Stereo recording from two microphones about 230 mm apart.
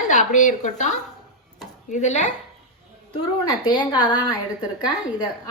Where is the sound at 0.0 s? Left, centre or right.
Left.